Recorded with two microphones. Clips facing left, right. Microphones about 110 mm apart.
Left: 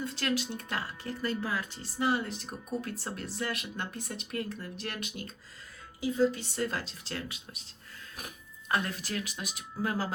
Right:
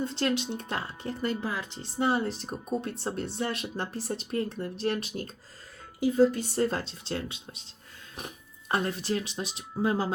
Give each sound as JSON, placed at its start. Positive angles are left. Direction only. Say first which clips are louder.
{"t": 0.0, "sound": "speech", "louder": "right 4 dB", "side_deg": -25}
{"t": 6.0, "sound": "speech", "louder": "right 5 dB", "side_deg": -50}
{"t": 8.7, "sound": "speech", "louder": "right 4 dB", "side_deg": -30}